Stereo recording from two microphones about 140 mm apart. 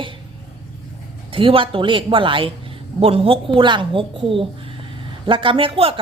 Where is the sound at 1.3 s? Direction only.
40° right (ahead or behind).